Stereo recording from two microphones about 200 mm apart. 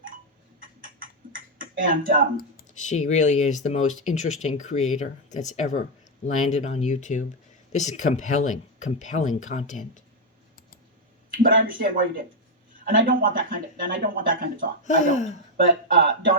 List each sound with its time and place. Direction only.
1.5 s speech: 45° right (ahead or behind)
2.4 s speech: 45° left (ahead or behind)
11.4 s speech: 45° right (ahead or behind)
14.8 s speech: 35° left (ahead or behind)
16.0 s speech: 45° right (ahead or behind)